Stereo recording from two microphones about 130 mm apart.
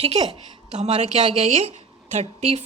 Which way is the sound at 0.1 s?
60° right (ahead or behind).